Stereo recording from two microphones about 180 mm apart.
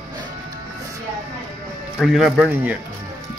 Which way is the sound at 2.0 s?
Centre (ahead or behind).